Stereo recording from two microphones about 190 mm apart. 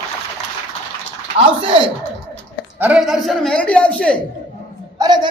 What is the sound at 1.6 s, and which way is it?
Speech, 25° right (ahead or behind).